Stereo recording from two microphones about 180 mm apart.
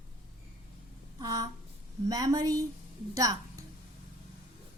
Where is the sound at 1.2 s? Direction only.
20° right (ahead or behind).